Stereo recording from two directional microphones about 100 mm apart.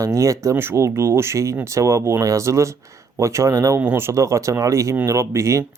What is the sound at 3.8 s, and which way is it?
Speech, 20° right (ahead or behind).